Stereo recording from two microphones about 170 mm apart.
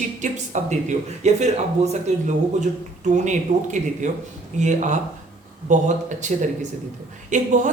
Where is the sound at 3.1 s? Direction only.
45° right (ahead or behind).